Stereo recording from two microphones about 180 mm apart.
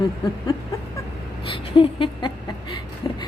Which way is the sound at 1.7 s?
25° left (ahead or behind).